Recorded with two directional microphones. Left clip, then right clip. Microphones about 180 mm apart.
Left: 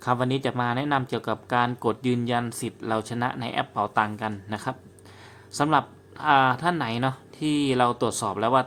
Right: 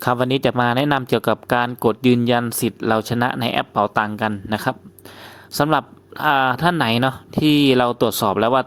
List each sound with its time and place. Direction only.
0.0 s speech: 40° right (ahead or behind)